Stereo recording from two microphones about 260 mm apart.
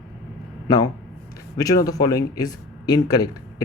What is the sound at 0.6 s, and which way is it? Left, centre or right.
Speech, centre.